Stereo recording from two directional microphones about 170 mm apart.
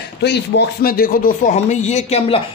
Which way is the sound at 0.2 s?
85° left.